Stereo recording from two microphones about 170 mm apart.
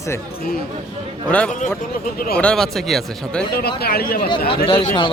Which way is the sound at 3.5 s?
65° left (ahead or behind).